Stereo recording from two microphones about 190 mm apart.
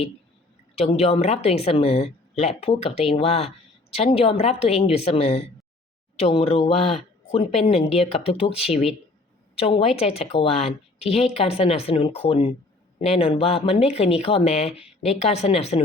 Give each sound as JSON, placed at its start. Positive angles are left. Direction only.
{"t": 0.8, "sound": "speech", "side_deg": 30}